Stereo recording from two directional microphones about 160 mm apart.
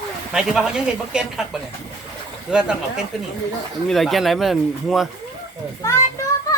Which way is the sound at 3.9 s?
Centre (ahead or behind).